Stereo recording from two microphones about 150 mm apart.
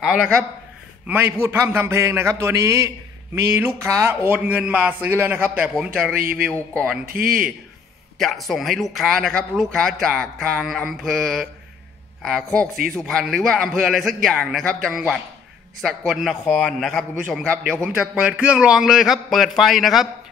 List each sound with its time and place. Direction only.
0.0 s speech: centre (ahead or behind)
1.0 s speech: 15° right (ahead or behind)
6.5 s a man's voice: 10° left (ahead or behind)
7.1 s a man's voice: 75° right (ahead or behind)
8.2 s speech: centre (ahead or behind)
17.8 s speech: 10° right (ahead or behind)